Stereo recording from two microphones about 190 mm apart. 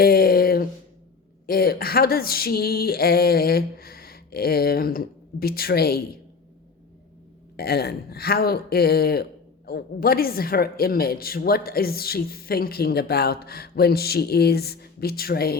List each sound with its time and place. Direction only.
0.0 s a sound: 55° left (ahead or behind)
1.5 s a woman's voice: 50° left (ahead or behind)
7.5 s a woman's voice: 55° left (ahead or behind)